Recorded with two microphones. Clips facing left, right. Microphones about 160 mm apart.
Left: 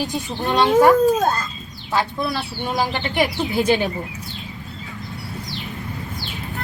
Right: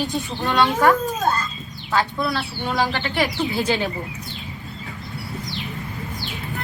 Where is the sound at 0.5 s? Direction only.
15° left (ahead or behind).